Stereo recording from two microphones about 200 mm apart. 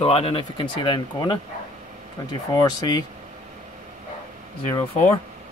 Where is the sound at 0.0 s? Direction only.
30° left (ahead or behind).